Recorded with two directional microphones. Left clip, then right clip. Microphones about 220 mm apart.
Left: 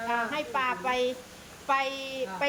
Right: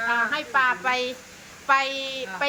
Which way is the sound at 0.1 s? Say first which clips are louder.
Right 5 dB; 5° right (ahead or behind).